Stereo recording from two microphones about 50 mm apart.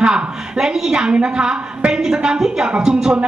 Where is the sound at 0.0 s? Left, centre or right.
Centre.